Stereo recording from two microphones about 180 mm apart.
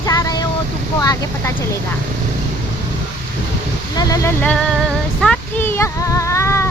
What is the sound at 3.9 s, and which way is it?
Speech, 20° left (ahead or behind).